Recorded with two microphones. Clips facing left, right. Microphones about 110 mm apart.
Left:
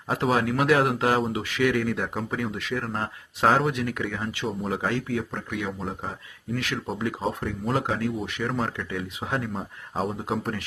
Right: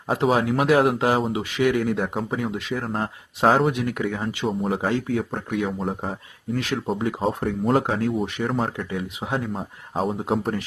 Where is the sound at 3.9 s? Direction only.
20° right (ahead or behind); by 6.1 s 40° right (ahead or behind).